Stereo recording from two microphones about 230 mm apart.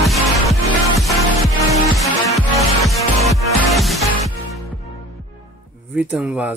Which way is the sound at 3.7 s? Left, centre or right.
Centre.